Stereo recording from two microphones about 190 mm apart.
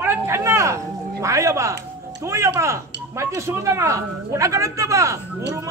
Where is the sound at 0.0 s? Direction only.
15° right (ahead or behind).